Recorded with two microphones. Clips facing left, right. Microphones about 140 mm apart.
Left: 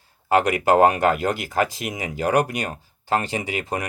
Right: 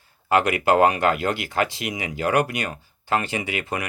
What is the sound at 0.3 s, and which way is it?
Speech, 40° left (ahead or behind).